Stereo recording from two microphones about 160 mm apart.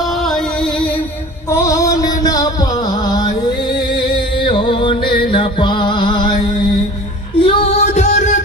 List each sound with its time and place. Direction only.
0.0 s music: centre (ahead or behind)
1.5 s music: 20° left (ahead or behind)
7.4 s music: 40° left (ahead or behind)